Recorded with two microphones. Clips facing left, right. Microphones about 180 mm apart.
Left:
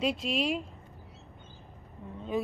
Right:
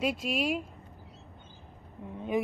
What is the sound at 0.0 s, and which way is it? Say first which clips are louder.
Speech: even; 5° right (ahead or behind).